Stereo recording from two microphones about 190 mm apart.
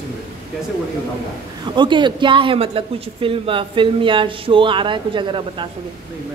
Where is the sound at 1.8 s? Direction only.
25° right (ahead or behind).